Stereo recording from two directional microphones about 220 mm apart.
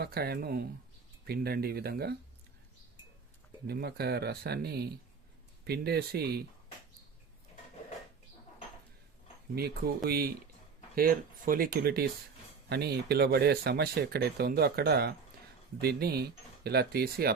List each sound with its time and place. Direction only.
0.0 s speech: 45° right (ahead or behind)
3.7 s speech: 45° right (ahead or behind)
9.6 s speech: 45° right (ahead or behind)